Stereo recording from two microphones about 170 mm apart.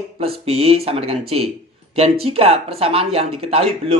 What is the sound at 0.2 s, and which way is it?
Speech, 35° right (ahead or behind).